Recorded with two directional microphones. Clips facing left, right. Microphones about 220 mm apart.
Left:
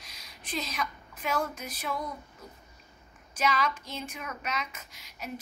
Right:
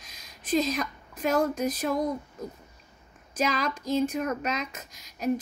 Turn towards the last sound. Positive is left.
turn(degrees=-40)  # may be behind; listen again after turning